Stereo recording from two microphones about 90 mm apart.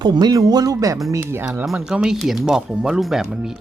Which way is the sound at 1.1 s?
30° right (ahead or behind).